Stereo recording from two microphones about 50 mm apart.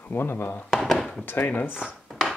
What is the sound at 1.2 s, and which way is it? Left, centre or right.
Speech, left.